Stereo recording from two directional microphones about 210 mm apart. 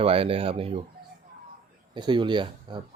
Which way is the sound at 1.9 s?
20° right (ahead or behind).